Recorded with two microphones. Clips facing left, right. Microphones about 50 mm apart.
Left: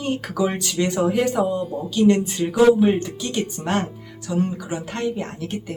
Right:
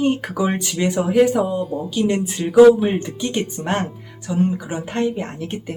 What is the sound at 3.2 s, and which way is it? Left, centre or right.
Speech, right.